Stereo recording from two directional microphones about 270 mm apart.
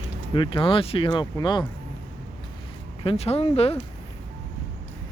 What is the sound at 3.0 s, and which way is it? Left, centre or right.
Speech, left.